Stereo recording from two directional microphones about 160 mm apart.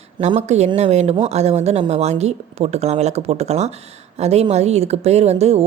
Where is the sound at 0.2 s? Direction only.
45° right (ahead or behind).